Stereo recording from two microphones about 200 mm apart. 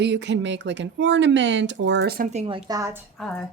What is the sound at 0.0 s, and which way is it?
Speech, 60° right (ahead or behind).